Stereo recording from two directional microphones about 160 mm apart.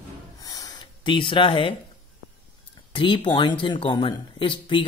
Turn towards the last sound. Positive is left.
turn(degrees=30)  # may be behind; listen again after turning